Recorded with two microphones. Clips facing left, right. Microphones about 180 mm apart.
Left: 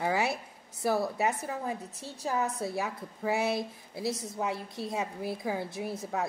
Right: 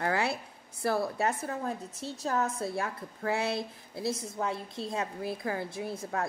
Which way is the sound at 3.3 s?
20° left (ahead or behind).